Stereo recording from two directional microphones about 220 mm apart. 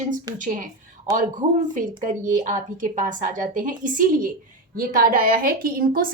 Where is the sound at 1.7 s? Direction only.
35° right (ahead or behind).